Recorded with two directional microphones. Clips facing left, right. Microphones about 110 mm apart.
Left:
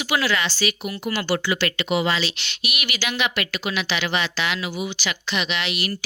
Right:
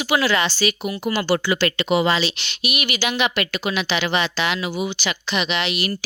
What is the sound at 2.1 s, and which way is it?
Speech, 20° right (ahead or behind).